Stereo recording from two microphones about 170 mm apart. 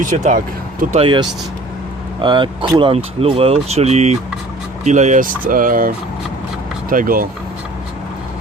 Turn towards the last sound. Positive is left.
turn(degrees=-55)  # may be behind; listen again after turning